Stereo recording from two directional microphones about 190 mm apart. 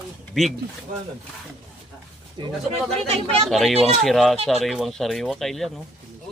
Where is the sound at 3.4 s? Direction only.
Centre (ahead or behind).